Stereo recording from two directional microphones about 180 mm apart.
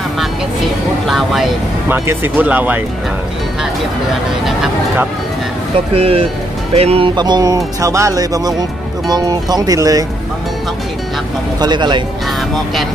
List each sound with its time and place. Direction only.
1.0 s speech: centre (ahead or behind)
1.9 s speech: 10° right (ahead or behind)
5.9 s speech: 30° right (ahead or behind)
11.6 s speech: 25° right (ahead or behind)